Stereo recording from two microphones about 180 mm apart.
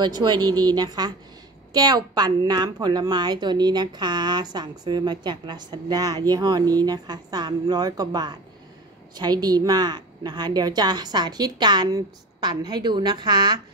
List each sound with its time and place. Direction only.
0.0 s a woman's voice: 25° right (ahead or behind)